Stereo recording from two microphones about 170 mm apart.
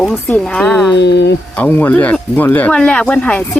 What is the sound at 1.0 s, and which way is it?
Speech, 85° left.